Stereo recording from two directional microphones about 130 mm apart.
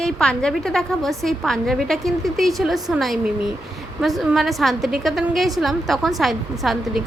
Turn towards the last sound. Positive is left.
turn(degrees=0)  # may be behind; listen again after turning